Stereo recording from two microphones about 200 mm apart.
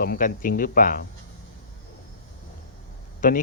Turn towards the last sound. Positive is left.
turn(degrees=40)  # may be behind; listen again after turning